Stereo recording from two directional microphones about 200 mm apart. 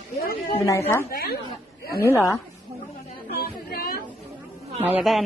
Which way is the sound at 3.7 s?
50° left (ahead or behind).